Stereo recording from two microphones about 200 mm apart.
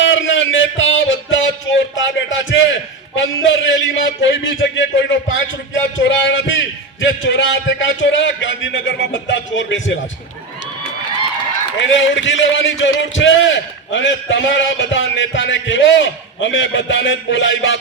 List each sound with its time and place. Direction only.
0.0 s a sound: 70° left (ahead or behind)
3.2 s a man's voice: 70° left (ahead or behind)
11.8 s a man's voice: 70° left (ahead or behind)